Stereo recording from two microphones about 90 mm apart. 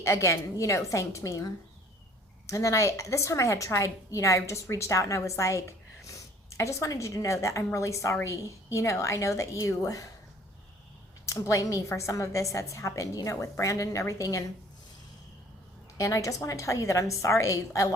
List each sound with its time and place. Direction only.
0.0 s a woman's voice: 35° left (ahead or behind)
11.3 s a woman's voice: 35° left (ahead or behind)
16.0 s a woman's voice: 40° left (ahead or behind)